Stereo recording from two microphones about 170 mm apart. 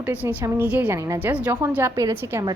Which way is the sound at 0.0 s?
10° right (ahead or behind).